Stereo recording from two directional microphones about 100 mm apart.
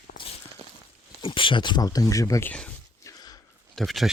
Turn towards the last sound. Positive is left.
turn(degrees=0)  # may be behind; listen again after turning